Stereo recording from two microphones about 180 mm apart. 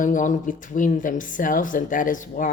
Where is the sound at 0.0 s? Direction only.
45° left (ahead or behind).